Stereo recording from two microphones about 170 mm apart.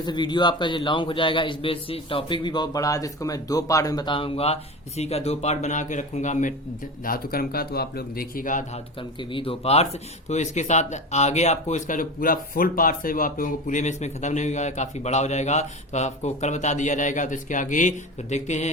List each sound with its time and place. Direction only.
0.0 s a man's voice: 25° left (ahead or behind); by 6.5 s 45° left (ahead or behind)
7.0 s speech: 60° left (ahead or behind)
9.0 s speech: 30° left (ahead or behind)